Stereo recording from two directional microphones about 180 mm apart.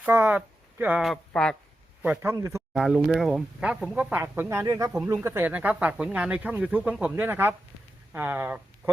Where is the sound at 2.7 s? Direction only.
5° right (ahead or behind).